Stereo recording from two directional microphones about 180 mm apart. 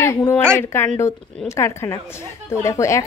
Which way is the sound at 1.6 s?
15° left (ahead or behind).